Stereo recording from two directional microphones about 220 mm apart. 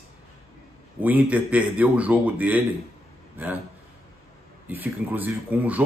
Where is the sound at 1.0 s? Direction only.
5° right (ahead or behind).